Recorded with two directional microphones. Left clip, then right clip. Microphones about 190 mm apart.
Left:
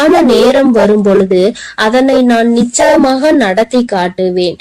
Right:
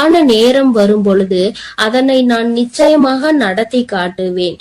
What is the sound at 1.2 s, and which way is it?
Speech, 25° left (ahead or behind).